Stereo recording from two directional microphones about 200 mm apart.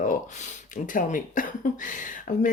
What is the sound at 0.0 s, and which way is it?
Speech, 40° left (ahead or behind).